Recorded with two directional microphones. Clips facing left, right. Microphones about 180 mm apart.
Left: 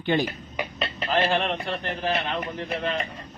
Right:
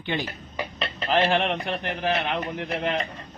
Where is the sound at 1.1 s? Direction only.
15° right (ahead or behind).